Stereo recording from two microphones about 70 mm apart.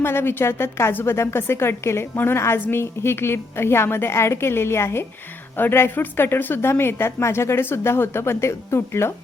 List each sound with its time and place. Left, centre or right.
0.0 s a woman's voice: left